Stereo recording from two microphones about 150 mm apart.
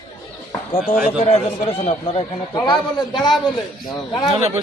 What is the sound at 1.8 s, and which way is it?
Speech, 45° left (ahead or behind).